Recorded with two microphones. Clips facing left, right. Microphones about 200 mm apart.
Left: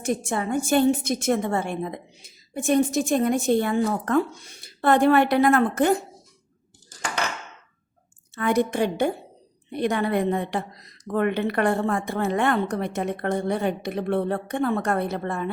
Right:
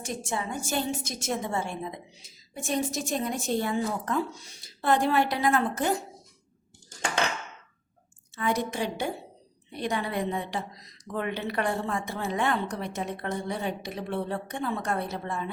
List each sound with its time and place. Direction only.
0.0 s a woman's voice: 55° left (ahead or behind)
8.4 s a woman's voice: 60° left (ahead or behind)